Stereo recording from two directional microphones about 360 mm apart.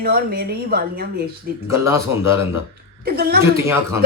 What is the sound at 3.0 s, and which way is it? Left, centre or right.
Speech, right.